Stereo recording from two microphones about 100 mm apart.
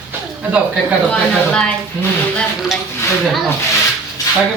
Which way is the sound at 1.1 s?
10° left (ahead or behind).